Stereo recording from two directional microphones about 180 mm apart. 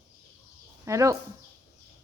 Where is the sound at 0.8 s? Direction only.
15° right (ahead or behind).